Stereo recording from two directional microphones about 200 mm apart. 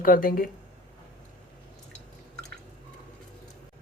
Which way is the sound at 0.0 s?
45° left (ahead or behind).